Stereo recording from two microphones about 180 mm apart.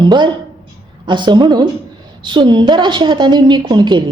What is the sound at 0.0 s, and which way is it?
A woman's voice, 25° right (ahead or behind).